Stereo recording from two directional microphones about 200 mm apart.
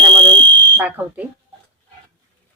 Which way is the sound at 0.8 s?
10° right (ahead or behind).